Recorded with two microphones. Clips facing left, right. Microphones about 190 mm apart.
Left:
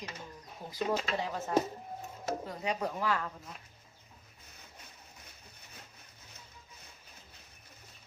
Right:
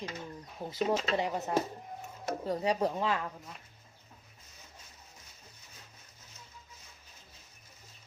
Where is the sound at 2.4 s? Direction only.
35° right (ahead or behind).